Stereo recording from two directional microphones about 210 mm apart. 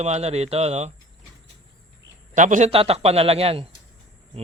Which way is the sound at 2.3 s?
35° right (ahead or behind).